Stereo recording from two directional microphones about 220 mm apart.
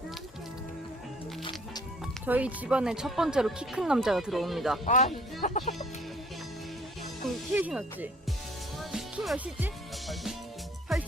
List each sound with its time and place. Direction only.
2.2 s speech: 5° right (ahead or behind)
4.9 s speech: 35° left (ahead or behind)
7.3 s speech: 5° right (ahead or behind)
8.9 s music: 5° right (ahead or behind)
10.9 s music: centre (ahead or behind)